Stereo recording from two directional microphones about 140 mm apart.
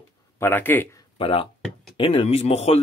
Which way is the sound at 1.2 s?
40° left (ahead or behind).